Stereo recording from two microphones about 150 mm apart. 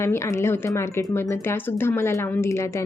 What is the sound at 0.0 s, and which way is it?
A woman's voice, 20° left (ahead or behind).